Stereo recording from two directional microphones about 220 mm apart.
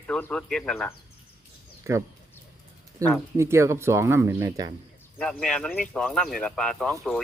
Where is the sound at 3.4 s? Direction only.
10° right (ahead or behind).